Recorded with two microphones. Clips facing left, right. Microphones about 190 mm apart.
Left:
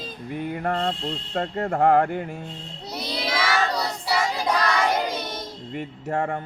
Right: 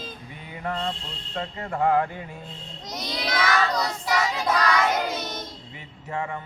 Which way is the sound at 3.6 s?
30° left (ahead or behind).